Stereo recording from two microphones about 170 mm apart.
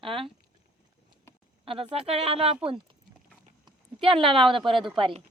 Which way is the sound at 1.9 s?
35° right (ahead or behind).